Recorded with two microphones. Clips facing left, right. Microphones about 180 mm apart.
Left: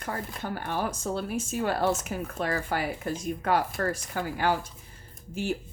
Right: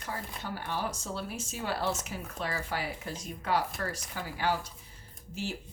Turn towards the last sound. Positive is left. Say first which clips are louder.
# left 7 dB
turn(degrees=50)  # may be behind; listen again after turning